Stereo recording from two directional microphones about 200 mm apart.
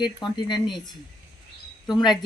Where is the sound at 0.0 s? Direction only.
20° left (ahead or behind).